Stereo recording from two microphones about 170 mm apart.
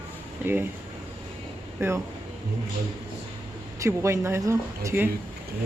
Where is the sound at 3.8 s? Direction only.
15° right (ahead or behind).